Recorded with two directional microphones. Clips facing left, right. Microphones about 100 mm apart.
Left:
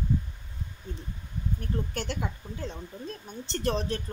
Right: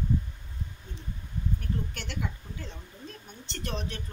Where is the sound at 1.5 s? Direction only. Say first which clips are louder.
Left 3 dB; 35° left (ahead or behind).